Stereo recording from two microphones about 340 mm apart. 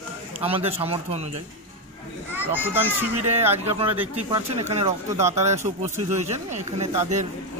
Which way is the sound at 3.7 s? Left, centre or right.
Centre.